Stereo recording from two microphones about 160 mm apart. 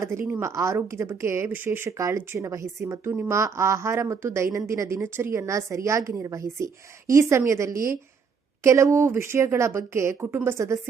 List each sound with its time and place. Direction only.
0.0 s a woman's voice: 15° right (ahead or behind)